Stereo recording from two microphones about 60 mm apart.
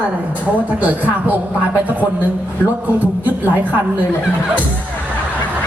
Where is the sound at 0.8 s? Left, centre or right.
Right.